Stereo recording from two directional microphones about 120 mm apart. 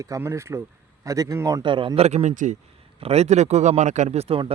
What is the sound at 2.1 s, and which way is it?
Speech, 70° right (ahead or behind).